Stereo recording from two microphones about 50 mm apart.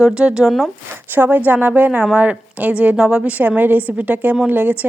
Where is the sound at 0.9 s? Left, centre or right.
Right.